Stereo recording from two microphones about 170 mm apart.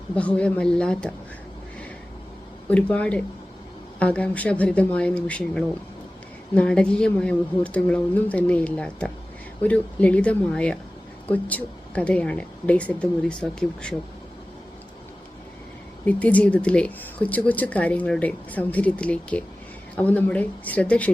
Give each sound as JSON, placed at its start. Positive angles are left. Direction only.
{"t": 0.2, "sound": "speech", "side_deg": 5}
{"t": 2.6, "sound": "speech", "side_deg": 5}
{"t": 16.0, "sound": "speech", "side_deg": 10}